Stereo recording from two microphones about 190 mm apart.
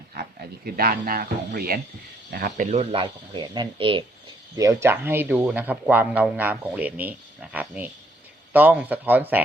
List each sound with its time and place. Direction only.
0.1 s speech: 50° right (ahead or behind); by 4.0 s 25° right (ahead or behind)
4.5 s speech: 15° right (ahead or behind)